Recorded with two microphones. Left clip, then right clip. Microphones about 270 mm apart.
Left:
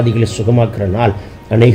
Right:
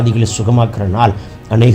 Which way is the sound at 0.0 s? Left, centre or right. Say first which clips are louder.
Left 2 dB; centre.